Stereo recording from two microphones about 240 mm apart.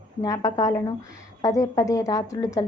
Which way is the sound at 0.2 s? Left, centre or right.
Centre.